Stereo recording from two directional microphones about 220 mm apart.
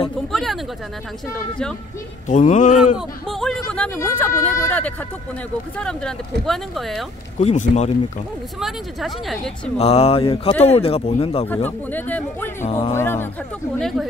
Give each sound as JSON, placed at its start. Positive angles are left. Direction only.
{"t": 0.3, "sound": "speech", "side_deg": 0}
{"t": 2.2, "sound": "speech", "side_deg": 35}
{"t": 3.3, "sound": "speech", "side_deg": 0}
{"t": 7.3, "sound": "speech", "side_deg": 30}
{"t": 8.5, "sound": "speech", "side_deg": 0}
{"t": 9.8, "sound": "speech", "side_deg": 30}
{"t": 11.4, "sound": "speech", "side_deg": 10}
{"t": 12.6, "sound": "speech", "side_deg": 30}
{"t": 12.9, "sound": "speech", "side_deg": 10}